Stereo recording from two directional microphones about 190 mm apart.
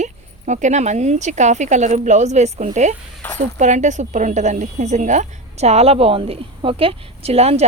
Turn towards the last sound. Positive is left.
turn(degrees=-35)  # may be behind; listen again after turning